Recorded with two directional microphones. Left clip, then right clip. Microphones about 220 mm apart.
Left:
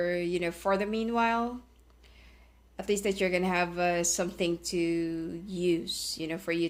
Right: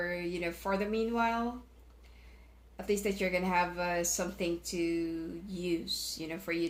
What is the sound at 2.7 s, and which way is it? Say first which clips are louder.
A woman's voice: left 3 dB; 40° left (ahead or behind).